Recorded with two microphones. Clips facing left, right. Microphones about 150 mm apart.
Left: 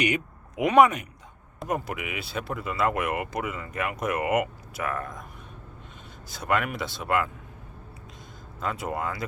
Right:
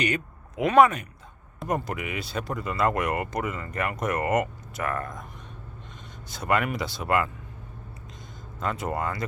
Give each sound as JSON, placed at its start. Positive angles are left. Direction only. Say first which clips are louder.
{"t": 0.0, "sound": "speech", "louder": "left 1 dB", "side_deg": 15}
{"t": 1.5, "sound": "speech", "louder": "right 1 dB", "side_deg": 5}
{"t": 6.2, "sound": "speech", "louder": "right 1 dB", "side_deg": 0}
{"t": 8.6, "sound": "speech", "louder": "right 1 dB", "side_deg": 0}